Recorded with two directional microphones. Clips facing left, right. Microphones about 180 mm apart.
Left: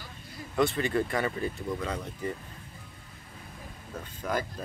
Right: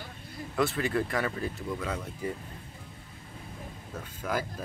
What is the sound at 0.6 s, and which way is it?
Speech, 5° right (ahead or behind).